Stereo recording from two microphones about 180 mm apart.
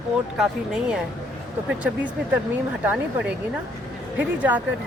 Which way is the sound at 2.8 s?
5° right (ahead or behind).